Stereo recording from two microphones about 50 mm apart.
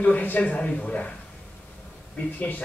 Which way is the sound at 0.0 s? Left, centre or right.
Left.